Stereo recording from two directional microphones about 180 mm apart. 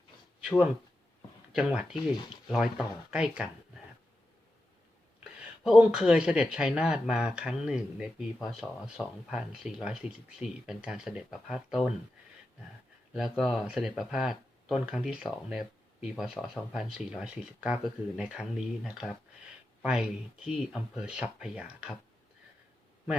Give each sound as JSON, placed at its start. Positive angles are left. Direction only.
{"t": 1.5, "sound": "speech", "side_deg": -5}
{"t": 5.6, "sound": "speech", "side_deg": -5}
{"t": 13.1, "sound": "speech", "side_deg": 0}